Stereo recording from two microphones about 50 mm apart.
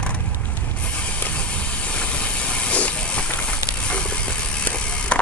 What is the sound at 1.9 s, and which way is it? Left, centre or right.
Hiss, left.